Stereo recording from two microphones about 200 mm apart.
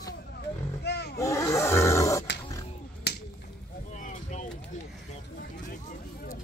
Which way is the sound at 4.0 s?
40° left (ahead or behind).